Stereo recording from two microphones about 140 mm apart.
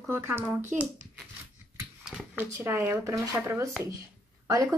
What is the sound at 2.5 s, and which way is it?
A woman's voice, 20° right (ahead or behind).